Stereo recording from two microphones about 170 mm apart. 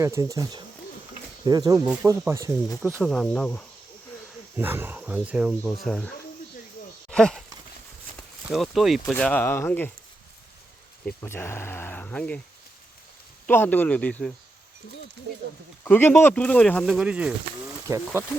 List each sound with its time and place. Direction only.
0.0 s speech: 20° right (ahead or behind)
3.0 s speech: 5° left (ahead or behind)
4.5 s speech: 10° right (ahead or behind); by 6.1 s 5° left (ahead or behind)
7.1 s a sound: 5° left (ahead or behind)
8.4 s speech: centre (ahead or behind)
11.0 s speech: 15° left (ahead or behind)
13.5 s speech: 10° left (ahead or behind)
15.8 s speech: 10° left (ahead or behind)
16.8 s speech: 5° right (ahead or behind)